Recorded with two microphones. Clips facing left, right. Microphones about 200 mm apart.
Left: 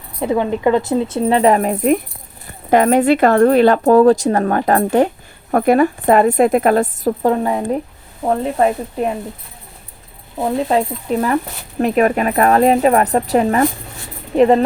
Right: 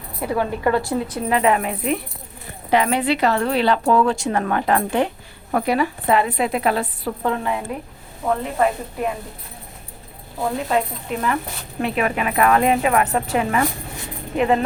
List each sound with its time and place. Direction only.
0.2 s speech: 20° left (ahead or behind); by 8.7 s 35° left (ahead or behind)
10.4 s speech: 30° left (ahead or behind)